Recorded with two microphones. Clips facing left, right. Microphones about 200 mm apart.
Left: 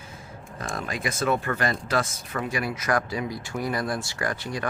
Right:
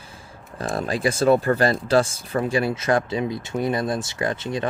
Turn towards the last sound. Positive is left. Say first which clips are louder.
# right 5 dB
turn(degrees=-25)  # may be behind; listen again after turning